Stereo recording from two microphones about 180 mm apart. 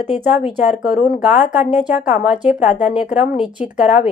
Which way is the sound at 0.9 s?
40° left (ahead or behind).